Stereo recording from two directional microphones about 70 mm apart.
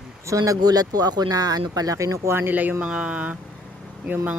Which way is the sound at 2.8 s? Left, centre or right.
Centre.